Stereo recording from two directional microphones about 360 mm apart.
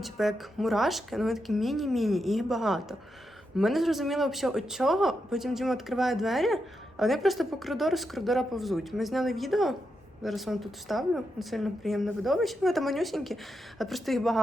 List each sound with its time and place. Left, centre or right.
0.0 s speech: centre